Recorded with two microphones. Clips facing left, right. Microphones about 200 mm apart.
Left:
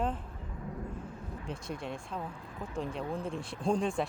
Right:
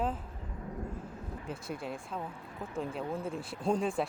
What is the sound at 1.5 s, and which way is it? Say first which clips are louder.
Speech: even; 5° right (ahead or behind).